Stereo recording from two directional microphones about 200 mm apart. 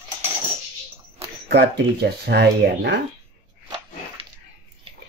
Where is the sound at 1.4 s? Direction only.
55° right (ahead or behind).